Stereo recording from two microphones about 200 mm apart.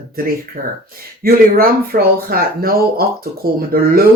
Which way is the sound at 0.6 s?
40° right (ahead or behind).